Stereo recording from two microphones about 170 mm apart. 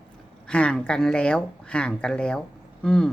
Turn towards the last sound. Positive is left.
turn(degrees=5)  # may be behind; listen again after turning